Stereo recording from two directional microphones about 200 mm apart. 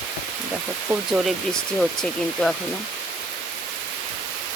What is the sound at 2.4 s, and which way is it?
Speech, 5° left (ahead or behind).